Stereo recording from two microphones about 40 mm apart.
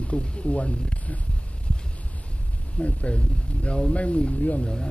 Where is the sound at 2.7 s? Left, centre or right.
Left.